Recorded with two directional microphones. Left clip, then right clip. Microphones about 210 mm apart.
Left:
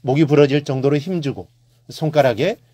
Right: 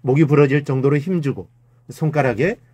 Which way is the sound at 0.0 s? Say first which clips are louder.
Left 1 dB; 20° left (ahead or behind).